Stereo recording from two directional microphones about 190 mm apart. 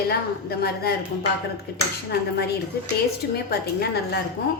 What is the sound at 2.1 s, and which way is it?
Speech, 60° left (ahead or behind).